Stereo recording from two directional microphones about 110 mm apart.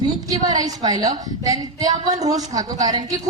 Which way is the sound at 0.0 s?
35° right (ahead or behind).